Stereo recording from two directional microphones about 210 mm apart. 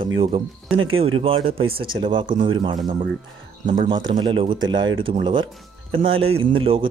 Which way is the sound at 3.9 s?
25° right (ahead or behind).